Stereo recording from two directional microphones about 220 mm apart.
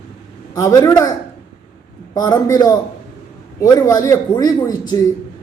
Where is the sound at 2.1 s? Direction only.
15° left (ahead or behind).